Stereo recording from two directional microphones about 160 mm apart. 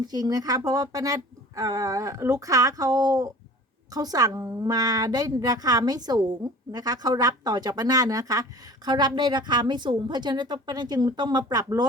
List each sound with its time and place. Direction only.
0.0 s a woman's voice: 25° right (ahead or behind)